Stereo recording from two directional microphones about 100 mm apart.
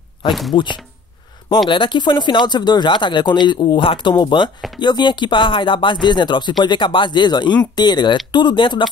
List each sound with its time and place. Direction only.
0.3 s speech: centre (ahead or behind)
1.7 s speech: 55° left (ahead or behind)